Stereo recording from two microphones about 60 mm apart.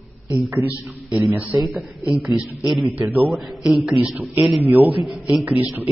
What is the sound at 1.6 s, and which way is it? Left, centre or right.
Speech, centre.